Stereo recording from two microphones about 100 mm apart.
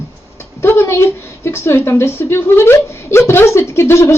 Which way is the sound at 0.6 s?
25° left (ahead or behind).